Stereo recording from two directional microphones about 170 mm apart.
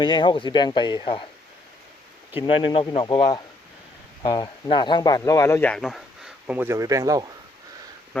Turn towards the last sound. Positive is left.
turn(degrees=-20)  # may be behind; listen again after turning